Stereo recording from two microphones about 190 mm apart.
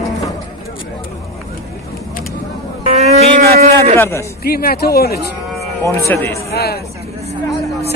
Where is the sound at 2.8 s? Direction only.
35° right (ahead or behind).